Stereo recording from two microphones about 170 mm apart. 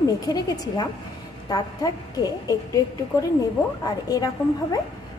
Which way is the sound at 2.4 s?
20° left (ahead or behind).